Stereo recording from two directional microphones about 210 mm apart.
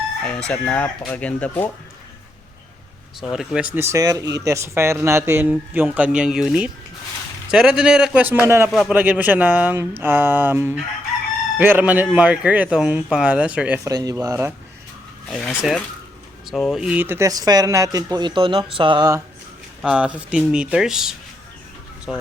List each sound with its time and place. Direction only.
0.3 s speech: 5° left (ahead or behind)
3.2 s speech: centre (ahead or behind)
13.8 s speech: 15° right (ahead or behind)
15.3 s speech: centre (ahead or behind); by 19.2 s 20° right (ahead or behind)
19.8 s speech: 5° right (ahead or behind)